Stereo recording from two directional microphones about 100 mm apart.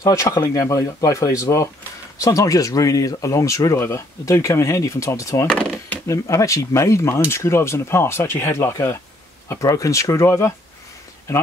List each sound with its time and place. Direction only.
0.0 s speech: 35° left (ahead or behind)
5.5 s drawer open or close: 10° left (ahead or behind)
6.0 s speech: 30° left (ahead or behind)